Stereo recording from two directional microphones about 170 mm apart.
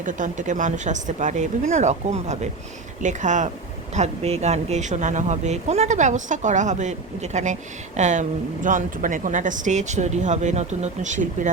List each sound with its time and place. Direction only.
0.0 s speech: 50° right (ahead or behind)